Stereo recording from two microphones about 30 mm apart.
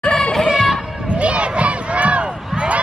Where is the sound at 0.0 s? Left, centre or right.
Left.